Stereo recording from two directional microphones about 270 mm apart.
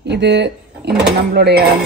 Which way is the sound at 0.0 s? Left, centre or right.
Right.